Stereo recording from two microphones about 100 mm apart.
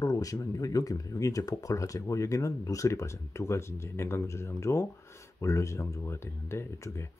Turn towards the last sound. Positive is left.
turn(degrees=30)  # may be behind; listen again after turning